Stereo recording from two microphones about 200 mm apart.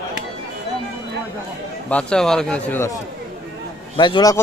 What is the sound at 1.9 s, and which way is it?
Speech, 5° left (ahead or behind).